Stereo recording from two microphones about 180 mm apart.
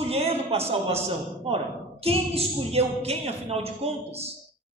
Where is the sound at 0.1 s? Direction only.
35° right (ahead or behind).